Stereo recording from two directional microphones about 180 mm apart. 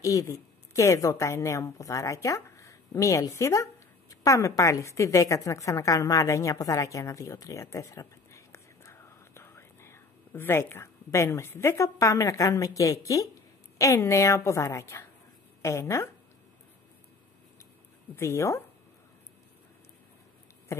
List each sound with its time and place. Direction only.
0.0 s a woman's voice: 20° left (ahead or behind)
18.1 s a woman's voice: 15° left (ahead or behind)